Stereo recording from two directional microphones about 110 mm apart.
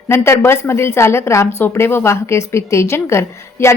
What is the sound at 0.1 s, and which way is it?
A woman's voice, 25° left (ahead or behind).